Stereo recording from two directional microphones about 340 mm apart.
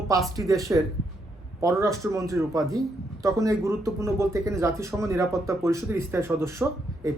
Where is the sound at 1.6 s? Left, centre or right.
Centre.